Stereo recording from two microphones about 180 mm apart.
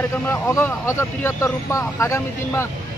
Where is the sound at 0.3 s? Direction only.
15° left (ahead or behind).